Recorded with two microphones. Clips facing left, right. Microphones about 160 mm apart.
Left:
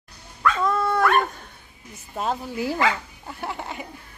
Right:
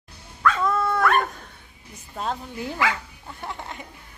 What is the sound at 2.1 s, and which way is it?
Speech, 5° left (ahead or behind).